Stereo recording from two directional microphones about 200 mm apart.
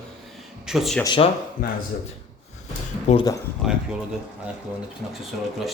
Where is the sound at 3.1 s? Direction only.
35° left (ahead or behind).